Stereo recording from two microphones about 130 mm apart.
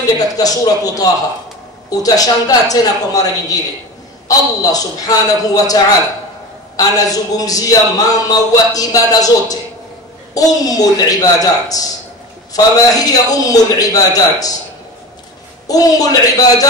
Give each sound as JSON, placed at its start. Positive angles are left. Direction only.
{"t": 0.2, "sound": "a man's voice", "side_deg": 30}
{"t": 6.8, "sound": "a man's voice", "side_deg": 30}
{"t": 15.6, "sound": "a man's voice", "side_deg": 30}